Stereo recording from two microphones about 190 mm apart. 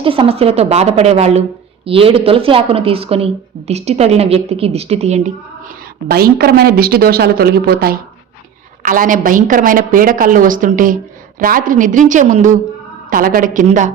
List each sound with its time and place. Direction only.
0.0 s a woman's voice: 30° right (ahead or behind)
6.1 s a woman's voice: 55° right (ahead or behind)